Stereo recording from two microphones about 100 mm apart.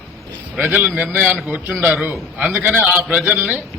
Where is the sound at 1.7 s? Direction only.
Centre (ahead or behind).